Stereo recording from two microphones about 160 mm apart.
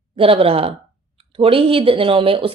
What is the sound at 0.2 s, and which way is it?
A woman's voice, 35° right (ahead or behind).